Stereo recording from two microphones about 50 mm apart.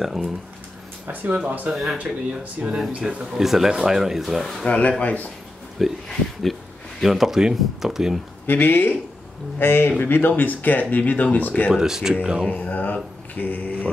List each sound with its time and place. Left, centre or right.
0.0 s speech: centre
1.0 s speech: right
2.0 s speech: centre
3.3 s speech: centre
4.6 s speech: left
5.8 s speech: centre
7.0 s speech: centre
8.5 s speech: left
11.7 s speech: centre
12.5 s mantra: left